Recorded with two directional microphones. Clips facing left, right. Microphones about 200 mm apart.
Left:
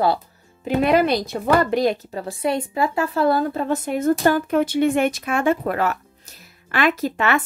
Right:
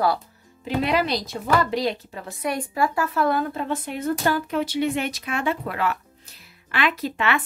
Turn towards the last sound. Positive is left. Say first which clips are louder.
# left 4 dB
turn(degrees=45)  # may be behind; listen again after turning